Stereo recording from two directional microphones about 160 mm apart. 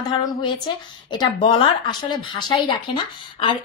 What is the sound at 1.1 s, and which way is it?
A woman's voice, 25° left (ahead or behind).